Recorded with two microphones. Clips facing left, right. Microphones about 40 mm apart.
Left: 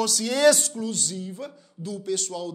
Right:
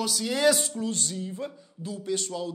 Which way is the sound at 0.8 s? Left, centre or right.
Right.